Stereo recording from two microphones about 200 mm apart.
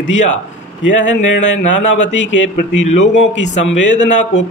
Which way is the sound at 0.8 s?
65° left (ahead or behind).